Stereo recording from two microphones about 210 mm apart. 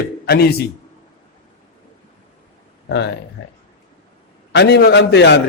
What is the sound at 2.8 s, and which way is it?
A man's voice, 55° left (ahead or behind).